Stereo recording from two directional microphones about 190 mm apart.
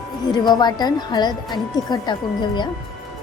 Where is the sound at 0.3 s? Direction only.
20° left (ahead or behind).